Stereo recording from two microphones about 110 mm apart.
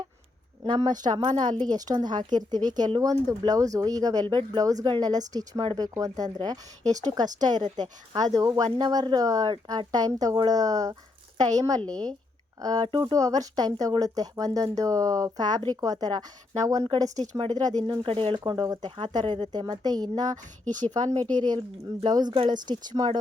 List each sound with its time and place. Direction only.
0.8 s speech: 40° right (ahead or behind)
18.0 s speech: 55° right (ahead or behind)
18.3 s speech: 40° right (ahead or behind)
18.9 s speech: 50° right (ahead or behind)